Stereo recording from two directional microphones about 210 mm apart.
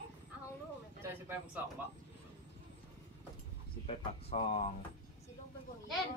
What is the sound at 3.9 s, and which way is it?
Speech, 30° left (ahead or behind).